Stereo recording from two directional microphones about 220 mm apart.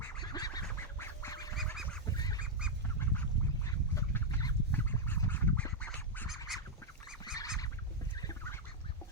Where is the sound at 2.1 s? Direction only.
15° left (ahead or behind).